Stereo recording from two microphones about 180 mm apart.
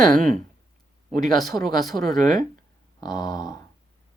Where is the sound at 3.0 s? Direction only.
20° left (ahead or behind).